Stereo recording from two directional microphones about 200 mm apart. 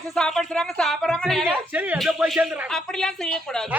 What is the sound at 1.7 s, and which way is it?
A man's voice, 10° right (ahead or behind).